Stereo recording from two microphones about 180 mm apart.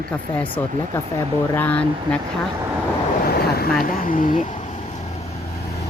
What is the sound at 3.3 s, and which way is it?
Boat, 60° left (ahead or behind).